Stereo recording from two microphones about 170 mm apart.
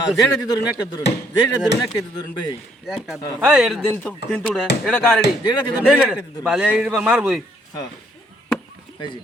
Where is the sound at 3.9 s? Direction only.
10° left (ahead or behind).